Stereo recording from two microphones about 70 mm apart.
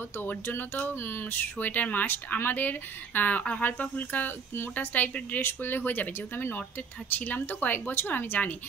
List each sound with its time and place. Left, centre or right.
0.2 s speech: left